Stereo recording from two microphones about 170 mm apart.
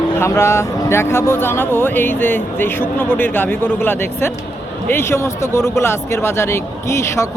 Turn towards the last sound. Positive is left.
turn(degrees=15)  # may be behind; listen again after turning